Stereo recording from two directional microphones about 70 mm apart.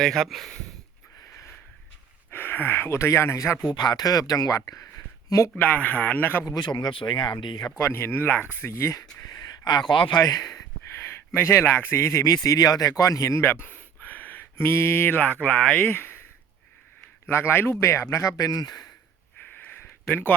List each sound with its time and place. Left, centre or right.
0.0 s speech: centre
2.3 s speech: left
3.7 s speech: left
5.5 s a man's voice: left
6.4 s speech: left
7.8 s speech: left
8.6 s speech: left
9.2 s speech: left
10.9 s speech: left
12.2 s speech: left
13.0 s speech: left
13.5 s speech: left
17.2 s speech: left